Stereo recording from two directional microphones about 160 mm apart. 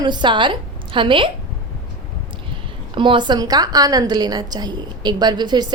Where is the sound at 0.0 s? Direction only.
30° right (ahead or behind).